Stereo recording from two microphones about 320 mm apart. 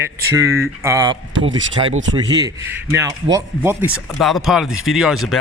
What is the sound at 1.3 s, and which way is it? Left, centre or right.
Speech, right.